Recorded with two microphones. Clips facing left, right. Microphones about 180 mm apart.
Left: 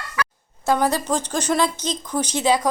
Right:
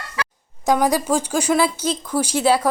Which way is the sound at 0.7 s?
10° right (ahead or behind).